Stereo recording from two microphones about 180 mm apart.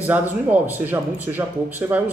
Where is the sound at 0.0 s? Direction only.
10° right (ahead or behind).